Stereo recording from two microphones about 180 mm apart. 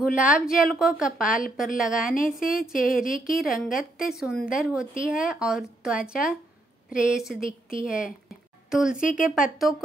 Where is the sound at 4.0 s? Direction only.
5° right (ahead or behind).